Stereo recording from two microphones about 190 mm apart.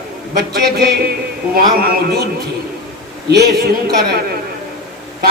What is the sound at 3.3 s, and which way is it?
Speech, 60° right (ahead or behind).